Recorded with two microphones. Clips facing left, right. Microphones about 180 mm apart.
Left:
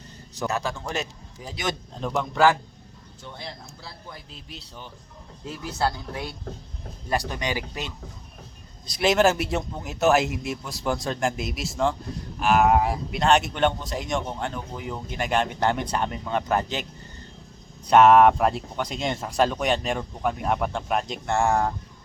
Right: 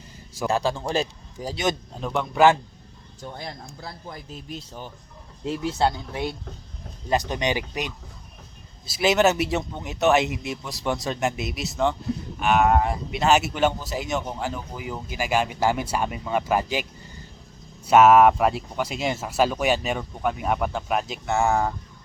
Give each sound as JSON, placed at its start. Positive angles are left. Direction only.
{"t": 0.4, "sound": "a man's voice", "side_deg": -30}
{"t": 2.0, "sound": "speech", "side_deg": 0}
{"t": 2.3, "sound": "speech", "side_deg": -20}
{"t": 3.2, "sound": "speech", "side_deg": -45}
{"t": 5.5, "sound": "speech", "side_deg": -25}
{"t": 8.9, "sound": "speech", "side_deg": 0}
{"t": 17.8, "sound": "speech", "side_deg": -5}